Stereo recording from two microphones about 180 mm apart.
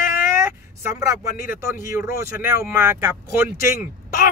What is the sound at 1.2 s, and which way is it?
Speech, 55° left (ahead or behind).